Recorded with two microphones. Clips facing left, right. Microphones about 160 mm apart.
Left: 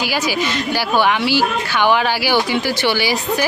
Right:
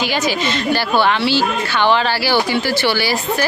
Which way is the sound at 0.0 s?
10° left (ahead or behind).